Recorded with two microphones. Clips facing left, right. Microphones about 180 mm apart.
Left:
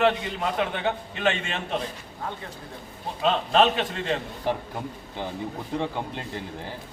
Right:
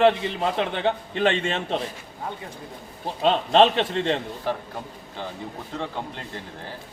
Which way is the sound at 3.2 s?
30° right (ahead or behind).